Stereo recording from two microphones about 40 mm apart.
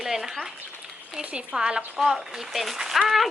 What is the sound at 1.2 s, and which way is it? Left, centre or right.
Speech, right.